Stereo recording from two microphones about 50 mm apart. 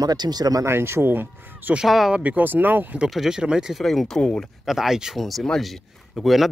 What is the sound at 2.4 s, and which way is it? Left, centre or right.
Speech, right.